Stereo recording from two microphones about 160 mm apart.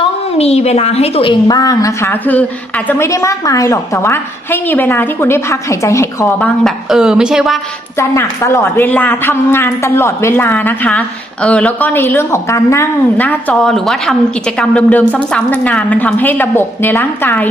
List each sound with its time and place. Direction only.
0.0 s a woman's voice: 40° left (ahead or behind); by 6.5 s 20° left (ahead or behind)
6.7 s a woman's voice: 5° right (ahead or behind)
7.9 s a woman's voice: 15° left (ahead or behind)